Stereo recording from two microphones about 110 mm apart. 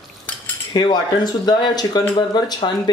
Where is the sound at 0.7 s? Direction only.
40° left (ahead or behind).